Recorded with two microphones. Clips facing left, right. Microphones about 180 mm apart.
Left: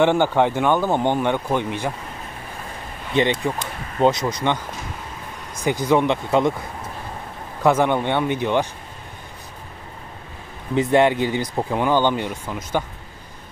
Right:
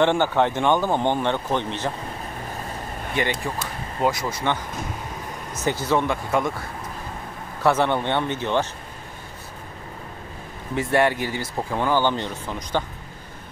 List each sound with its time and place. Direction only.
0.0 s speech: 10° left (ahead or behind)
3.2 s speech: 20° left (ahead or behind)
7.6 s speech: 15° left (ahead or behind)
10.7 s speech: 20° left (ahead or behind)